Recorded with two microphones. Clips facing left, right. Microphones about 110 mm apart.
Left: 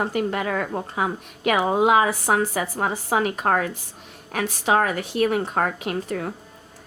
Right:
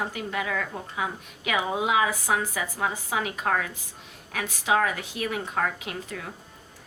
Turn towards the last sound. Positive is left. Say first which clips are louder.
# left 9 dB
turn(degrees=45)  # may be behind; listen again after turning